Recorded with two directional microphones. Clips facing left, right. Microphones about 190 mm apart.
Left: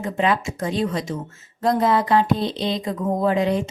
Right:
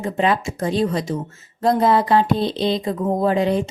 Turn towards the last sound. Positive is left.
turn(degrees=-30)  # may be behind; listen again after turning